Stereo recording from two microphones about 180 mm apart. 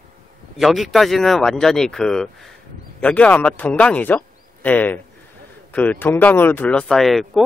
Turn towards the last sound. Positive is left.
turn(degrees=0)  # may be behind; listen again after turning